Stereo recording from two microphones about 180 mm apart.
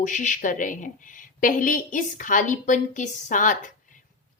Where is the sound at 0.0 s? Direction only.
45° left (ahead or behind).